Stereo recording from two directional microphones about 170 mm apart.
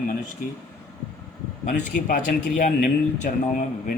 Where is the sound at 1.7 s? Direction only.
50° left (ahead or behind).